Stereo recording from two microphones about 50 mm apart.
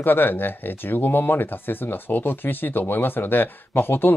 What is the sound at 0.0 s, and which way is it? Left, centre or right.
Speech, left.